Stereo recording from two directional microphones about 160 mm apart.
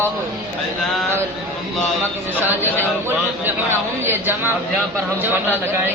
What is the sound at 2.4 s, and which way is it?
Speech, 15° right (ahead or behind).